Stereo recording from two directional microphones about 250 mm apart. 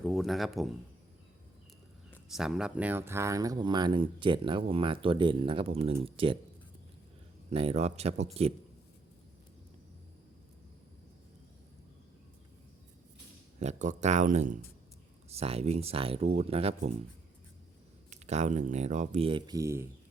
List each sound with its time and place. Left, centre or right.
0.0 s speech: centre
2.0 s speech: centre; by 6.3 s right
7.5 s speech: right
13.6 s speech: right
18.1 s speech: right; by 19.9 s centre